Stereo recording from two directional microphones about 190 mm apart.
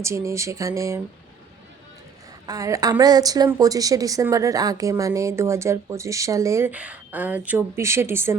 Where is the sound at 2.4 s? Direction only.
20° right (ahead or behind).